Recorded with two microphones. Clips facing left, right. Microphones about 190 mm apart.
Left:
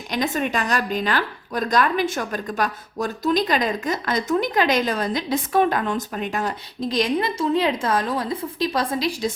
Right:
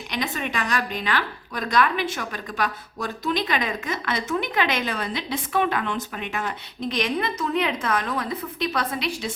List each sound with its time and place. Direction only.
0.1 s a woman's voice: 45° left (ahead or behind)